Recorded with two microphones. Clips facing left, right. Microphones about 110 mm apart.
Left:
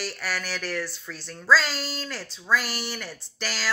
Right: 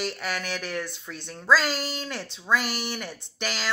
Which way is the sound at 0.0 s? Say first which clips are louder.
Right 1 dB; 20° right (ahead or behind).